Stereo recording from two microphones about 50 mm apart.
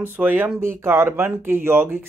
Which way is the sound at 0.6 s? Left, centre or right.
Right.